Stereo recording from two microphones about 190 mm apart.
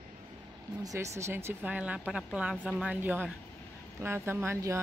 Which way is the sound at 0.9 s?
15° right (ahead or behind).